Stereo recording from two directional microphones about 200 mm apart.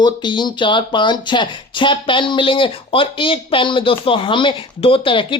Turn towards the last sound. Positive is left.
turn(degrees=25)  # may be behind; listen again after turning